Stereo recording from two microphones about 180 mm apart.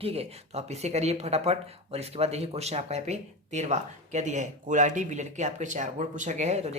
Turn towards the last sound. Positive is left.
turn(degrees=-40)  # may be behind; listen again after turning